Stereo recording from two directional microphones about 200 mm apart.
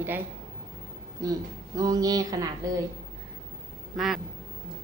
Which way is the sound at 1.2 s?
15° right (ahead or behind).